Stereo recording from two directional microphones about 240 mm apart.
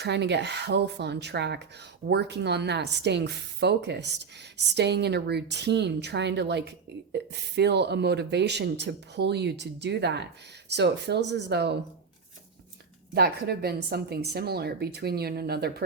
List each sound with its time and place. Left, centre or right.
0.0 s a woman's voice: right
13.1 s a woman's voice: right